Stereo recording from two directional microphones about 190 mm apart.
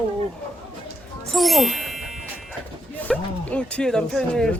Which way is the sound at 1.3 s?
Centre (ahead or behind).